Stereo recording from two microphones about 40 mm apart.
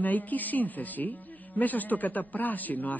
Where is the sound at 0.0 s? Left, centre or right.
Left.